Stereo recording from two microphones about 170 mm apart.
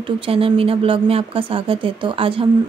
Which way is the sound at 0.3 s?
35° right (ahead or behind).